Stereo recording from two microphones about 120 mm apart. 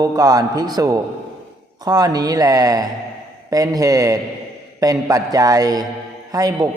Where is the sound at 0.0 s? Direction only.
30° right (ahead or behind).